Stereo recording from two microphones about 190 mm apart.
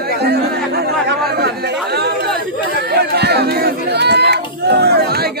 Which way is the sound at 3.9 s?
60° right (ahead or behind).